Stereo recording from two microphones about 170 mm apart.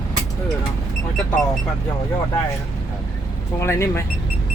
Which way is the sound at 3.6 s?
15° left (ahead or behind).